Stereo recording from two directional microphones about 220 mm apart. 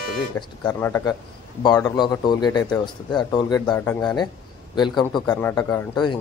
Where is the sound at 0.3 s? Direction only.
10° left (ahead or behind).